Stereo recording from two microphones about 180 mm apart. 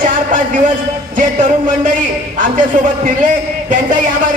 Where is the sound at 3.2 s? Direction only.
45° right (ahead or behind).